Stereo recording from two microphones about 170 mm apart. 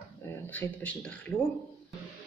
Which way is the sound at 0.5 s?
10° left (ahead or behind).